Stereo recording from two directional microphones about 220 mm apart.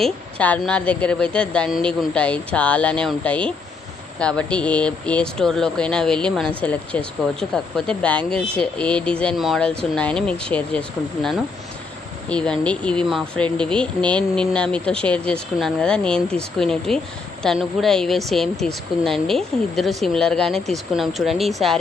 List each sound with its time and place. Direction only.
0.0 s speech: 5° left (ahead or behind)